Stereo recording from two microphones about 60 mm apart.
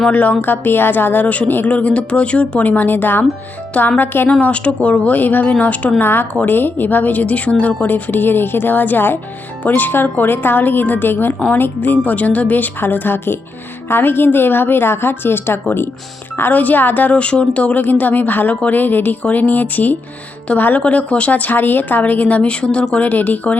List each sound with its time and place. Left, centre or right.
0.1 s a woman's voice: left
4.3 s a woman's voice: left
6.0 s a woman's voice: left
16.4 s a woman's voice: left
22.6 s speech: centre
23.0 s a woman's voice: left